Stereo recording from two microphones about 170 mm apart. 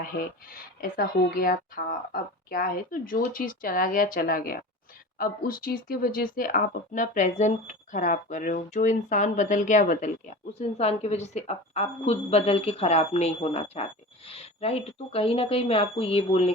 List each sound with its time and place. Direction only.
0.0 s speech: 55° left (ahead or behind); by 16.4 s 35° left (ahead or behind)